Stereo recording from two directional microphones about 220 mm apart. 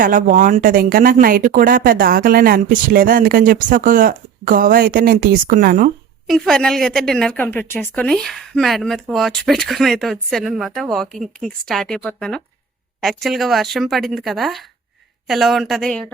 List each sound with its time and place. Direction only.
0.0 s speech: 35° right (ahead or behind)
6.2 s a woman's voice: centre (ahead or behind)